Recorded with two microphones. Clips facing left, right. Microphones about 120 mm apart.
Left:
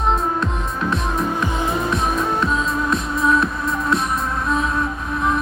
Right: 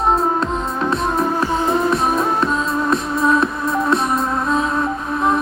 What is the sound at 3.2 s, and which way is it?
Music, 30° right (ahead or behind).